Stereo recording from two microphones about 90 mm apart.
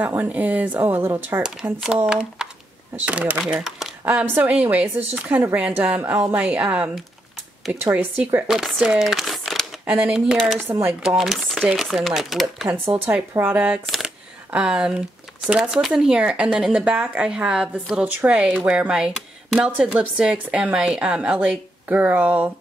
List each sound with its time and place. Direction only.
0.0 s speech: 15° right (ahead or behind)
1.4 s speech: 5° right (ahead or behind)
4.0 s speech: 15° right (ahead or behind)
8.5 s speech: 5° right (ahead or behind)
8.8 s crumpling: 5° right (ahead or behind)
10.6 s speech: 25° right (ahead or behind)
11.0 s speech: 5° right (ahead or behind)
12.6 s speech: 30° right (ahead or behind)
13.4 s speech: 20° right (ahead or behind)
13.8 s shuffling cards: 5° right (ahead or behind)
14.5 s speech: 10° right (ahead or behind)